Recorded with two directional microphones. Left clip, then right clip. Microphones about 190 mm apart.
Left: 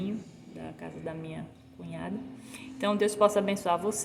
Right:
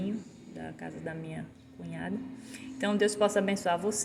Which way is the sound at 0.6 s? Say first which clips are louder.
Left 1 dB; 5° left (ahead or behind).